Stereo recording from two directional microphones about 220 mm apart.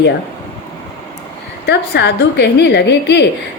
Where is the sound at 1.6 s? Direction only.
50° left (ahead or behind).